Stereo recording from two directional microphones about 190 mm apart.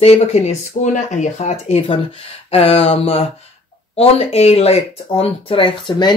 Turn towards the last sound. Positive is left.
turn(degrees=25)  # may be behind; listen again after turning